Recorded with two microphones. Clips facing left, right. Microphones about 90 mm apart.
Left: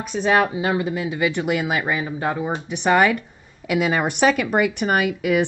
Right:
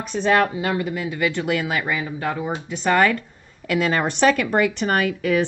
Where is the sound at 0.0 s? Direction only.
10° left (ahead or behind).